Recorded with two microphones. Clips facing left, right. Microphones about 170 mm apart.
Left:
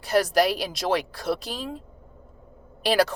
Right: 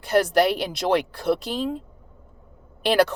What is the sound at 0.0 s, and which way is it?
A woman's voice, 60° right (ahead or behind).